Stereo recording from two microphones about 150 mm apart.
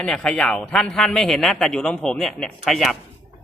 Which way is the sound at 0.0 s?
5° left (ahead or behind).